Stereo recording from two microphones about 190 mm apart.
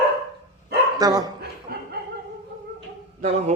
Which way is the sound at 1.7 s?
50° right (ahead or behind).